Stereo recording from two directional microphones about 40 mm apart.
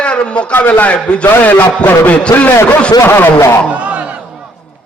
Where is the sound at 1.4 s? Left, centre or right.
Left.